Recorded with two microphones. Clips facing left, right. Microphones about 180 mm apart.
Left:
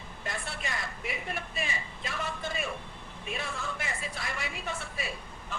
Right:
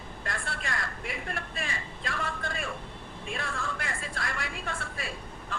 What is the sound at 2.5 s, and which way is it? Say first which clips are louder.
Vehicle: left 1 dB; 5° left (ahead or behind).